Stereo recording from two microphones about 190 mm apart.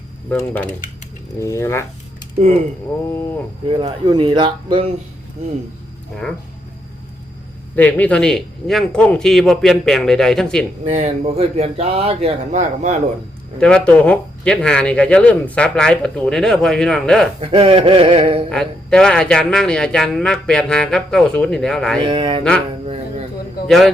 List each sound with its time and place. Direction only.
0.3 s speech: 10° left (ahead or behind)
2.4 s speech: 35° right (ahead or behind)
3.7 s speech: 25° right (ahead or behind)
7.8 s speech: 10° left (ahead or behind)
10.8 s speech: 35° right (ahead or behind)
13.6 s speech: 5° left (ahead or behind)
17.4 s speech: 30° right (ahead or behind)
18.5 s speech: 5° left (ahead or behind)
22.0 s speech: 25° right (ahead or behind)
23.6 s a man's voice: centre (ahead or behind)